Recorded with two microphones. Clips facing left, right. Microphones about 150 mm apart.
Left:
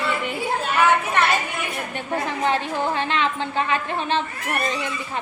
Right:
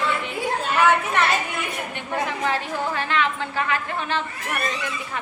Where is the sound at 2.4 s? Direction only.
25° left (ahead or behind).